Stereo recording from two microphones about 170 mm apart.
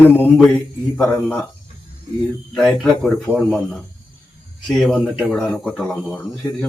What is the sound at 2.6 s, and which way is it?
Speech, centre (ahead or behind).